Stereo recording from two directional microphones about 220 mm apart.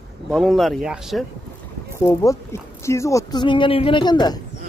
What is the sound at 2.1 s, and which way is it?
Speech, 15° left (ahead or behind).